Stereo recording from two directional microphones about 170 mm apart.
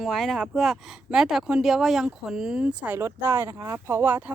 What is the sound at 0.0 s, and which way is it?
Speech, centre (ahead or behind).